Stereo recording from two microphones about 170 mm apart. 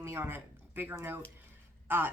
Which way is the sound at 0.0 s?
15° right (ahead or behind).